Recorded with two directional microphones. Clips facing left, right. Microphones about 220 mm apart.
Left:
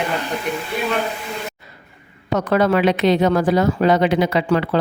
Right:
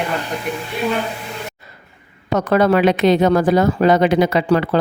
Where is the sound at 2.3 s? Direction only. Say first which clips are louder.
Right 2 dB; 45° right (ahead or behind).